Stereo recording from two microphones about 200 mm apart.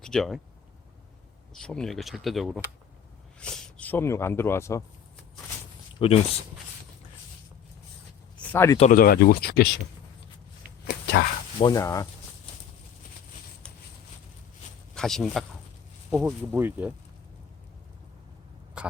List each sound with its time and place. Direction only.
0.0 s speech: centre (ahead or behind)
1.5 s speech: 5° left (ahead or behind)
6.0 s speech: 25° left (ahead or behind)
8.4 s speech: 10° left (ahead or behind)
8.8 s speech: 45° left (ahead or behind)
10.8 s a sound: 55° left (ahead or behind)
11.6 s speech: 15° left (ahead or behind)
14.9 s speech: centre (ahead or behind)
18.8 s rodents: 5° right (ahead or behind)